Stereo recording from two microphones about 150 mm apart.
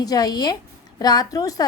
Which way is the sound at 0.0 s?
25° left (ahead or behind).